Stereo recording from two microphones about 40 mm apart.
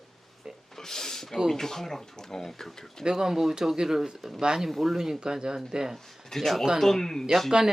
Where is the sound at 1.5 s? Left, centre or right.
Centre.